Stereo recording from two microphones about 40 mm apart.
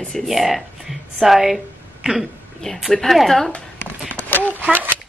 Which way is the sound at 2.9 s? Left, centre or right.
Centre.